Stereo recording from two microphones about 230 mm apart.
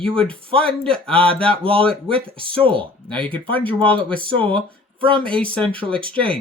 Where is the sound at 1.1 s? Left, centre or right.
Right.